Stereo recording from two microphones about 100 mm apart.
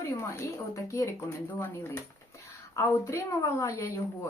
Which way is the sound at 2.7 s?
30° left (ahead or behind).